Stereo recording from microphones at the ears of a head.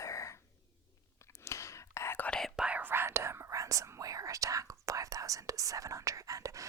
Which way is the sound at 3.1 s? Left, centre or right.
Right.